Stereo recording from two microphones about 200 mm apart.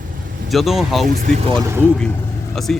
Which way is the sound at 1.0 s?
45° right (ahead or behind).